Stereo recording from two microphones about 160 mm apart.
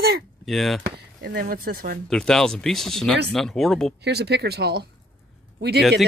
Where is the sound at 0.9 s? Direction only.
80° right.